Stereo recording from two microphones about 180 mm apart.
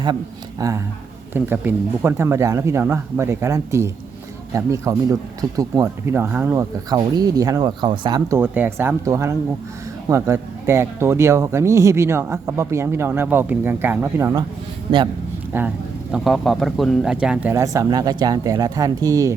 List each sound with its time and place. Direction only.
0.6 s speech: 20° right (ahead or behind)
8.4 s speech: 10° right (ahead or behind)
15.5 s speech: 10° right (ahead or behind)
16.1 s speech: centre (ahead or behind); by 19.3 s 20° right (ahead or behind)